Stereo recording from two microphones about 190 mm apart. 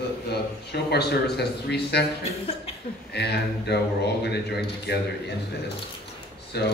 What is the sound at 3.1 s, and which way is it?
A man's voice, 60° left (ahead or behind).